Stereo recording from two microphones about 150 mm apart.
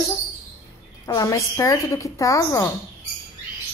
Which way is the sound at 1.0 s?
20° left (ahead or behind).